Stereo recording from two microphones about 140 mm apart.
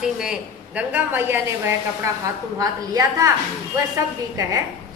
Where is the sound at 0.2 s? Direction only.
5° right (ahead or behind); by 4.6 s 25° right (ahead or behind).